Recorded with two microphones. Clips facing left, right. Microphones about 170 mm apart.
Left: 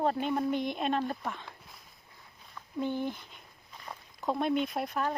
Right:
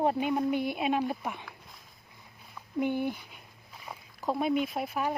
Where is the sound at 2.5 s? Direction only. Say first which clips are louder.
Right 3 dB; 10° right (ahead or behind).